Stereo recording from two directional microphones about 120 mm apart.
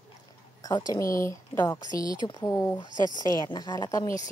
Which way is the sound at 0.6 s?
30° left (ahead or behind).